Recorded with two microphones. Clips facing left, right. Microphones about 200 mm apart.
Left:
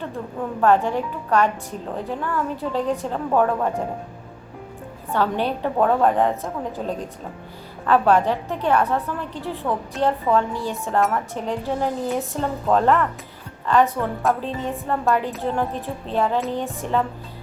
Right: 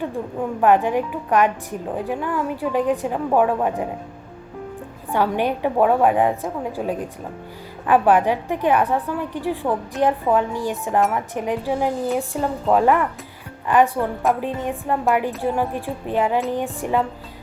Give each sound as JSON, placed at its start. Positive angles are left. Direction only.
{"t": 0.6, "sound": "a woman's voice", "side_deg": -15}
{"t": 5.1, "sound": "a woman's voice", "side_deg": -15}